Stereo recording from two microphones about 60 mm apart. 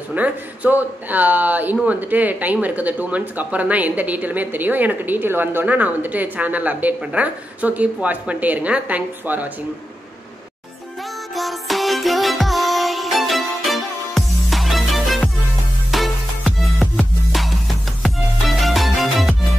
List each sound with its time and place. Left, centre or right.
0.1 s speech: right
11.3 s music: centre